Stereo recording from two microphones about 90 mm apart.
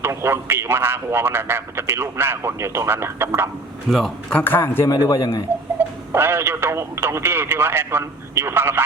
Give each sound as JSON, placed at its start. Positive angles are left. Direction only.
{"t": 0.0, "sound": "a man's voice", "side_deg": -30}
{"t": 3.8, "sound": "speech", "side_deg": 0}
{"t": 4.4, "sound": "a man's voice", "side_deg": 20}
{"t": 5.0, "sound": "a man's voice", "side_deg": 40}
{"t": 6.1, "sound": "a man's voice", "side_deg": -25}